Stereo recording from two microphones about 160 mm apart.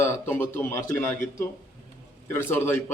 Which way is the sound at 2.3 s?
15° left (ahead or behind).